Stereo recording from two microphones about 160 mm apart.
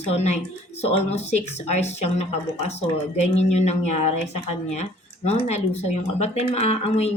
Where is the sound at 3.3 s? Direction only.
45° left (ahead or behind).